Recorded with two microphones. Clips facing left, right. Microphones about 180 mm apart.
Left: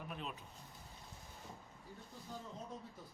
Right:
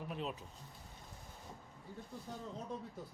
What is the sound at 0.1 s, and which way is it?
Vehicle, 30° right (ahead or behind).